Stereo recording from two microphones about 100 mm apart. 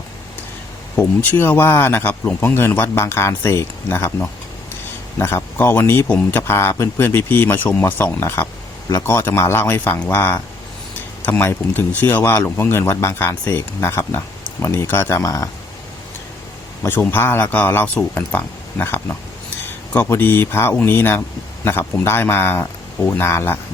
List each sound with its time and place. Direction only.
0.9 s speech: 20° left (ahead or behind)
16.8 s speech: 20° left (ahead or behind)